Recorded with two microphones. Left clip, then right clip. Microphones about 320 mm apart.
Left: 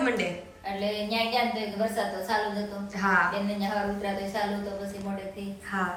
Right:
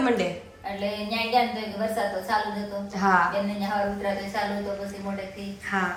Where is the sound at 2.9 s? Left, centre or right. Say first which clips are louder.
Right 3 dB; centre.